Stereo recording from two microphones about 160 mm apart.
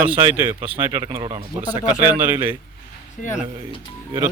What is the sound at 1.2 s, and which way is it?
Speech, 35° right (ahead or behind).